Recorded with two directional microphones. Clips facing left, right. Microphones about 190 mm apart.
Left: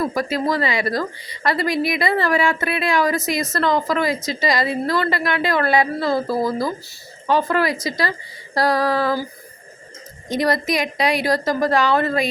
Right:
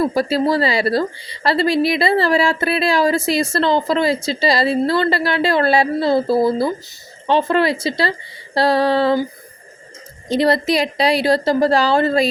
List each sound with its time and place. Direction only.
0.0 s a woman's voice: 30° right (ahead or behind)
10.2 s a woman's voice: 30° right (ahead or behind)